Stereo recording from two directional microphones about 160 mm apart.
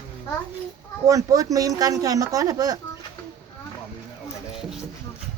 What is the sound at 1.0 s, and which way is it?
Speech, 20° right (ahead or behind).